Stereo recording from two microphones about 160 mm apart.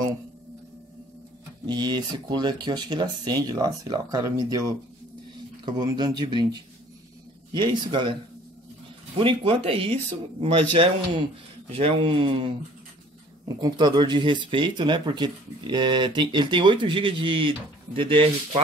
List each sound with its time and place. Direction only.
1.7 s speech: 25° right (ahead or behind)
9.2 s a man's voice: 35° right (ahead or behind)
13.6 s speech: 25° right (ahead or behind)